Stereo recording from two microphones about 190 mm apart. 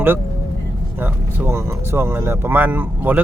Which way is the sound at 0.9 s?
10° right (ahead or behind).